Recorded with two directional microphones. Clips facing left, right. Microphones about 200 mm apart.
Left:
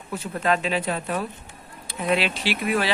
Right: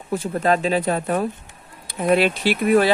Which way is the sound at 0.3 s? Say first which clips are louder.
Right 4 dB; 35° right (ahead or behind).